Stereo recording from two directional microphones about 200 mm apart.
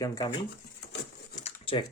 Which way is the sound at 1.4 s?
25° left (ahead or behind).